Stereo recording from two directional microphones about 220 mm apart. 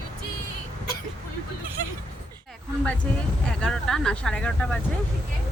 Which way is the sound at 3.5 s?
5° left (ahead or behind).